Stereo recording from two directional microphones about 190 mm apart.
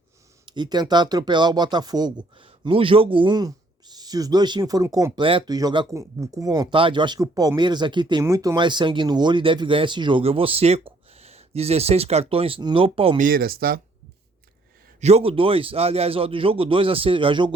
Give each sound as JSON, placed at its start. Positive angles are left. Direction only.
{"t": 0.4, "sound": "speech", "side_deg": -25}
{"t": 13.2, "sound": "speech", "side_deg": -50}
{"t": 15.0, "sound": "speech", "side_deg": -30}